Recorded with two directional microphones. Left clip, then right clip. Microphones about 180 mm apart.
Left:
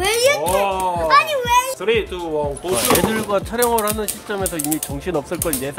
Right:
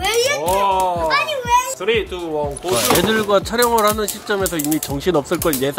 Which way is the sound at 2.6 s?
20° right (ahead or behind).